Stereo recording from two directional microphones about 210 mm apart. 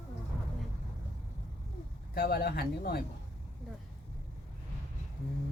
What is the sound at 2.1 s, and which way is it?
Speech, 50° left (ahead or behind).